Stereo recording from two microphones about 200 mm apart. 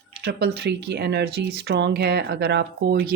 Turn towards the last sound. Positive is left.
turn(degrees=-55)  # may be behind; listen again after turning